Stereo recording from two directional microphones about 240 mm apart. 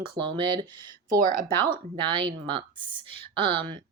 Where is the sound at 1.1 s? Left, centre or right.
Right.